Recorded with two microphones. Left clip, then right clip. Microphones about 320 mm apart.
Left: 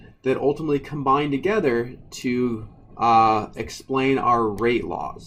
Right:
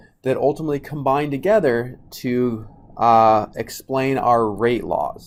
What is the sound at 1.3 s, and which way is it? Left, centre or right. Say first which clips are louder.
Speech: right 4 dB; right.